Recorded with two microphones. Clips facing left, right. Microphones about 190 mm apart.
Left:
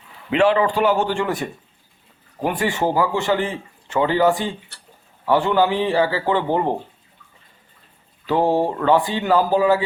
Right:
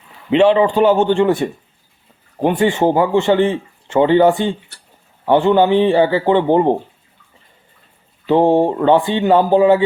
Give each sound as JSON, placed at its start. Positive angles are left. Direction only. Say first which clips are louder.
{"t": 0.3, "sound": "speech", "louder": "right 5 dB", "side_deg": -25}
{"t": 8.3, "sound": "speech", "louder": "right 6 dB", "side_deg": -25}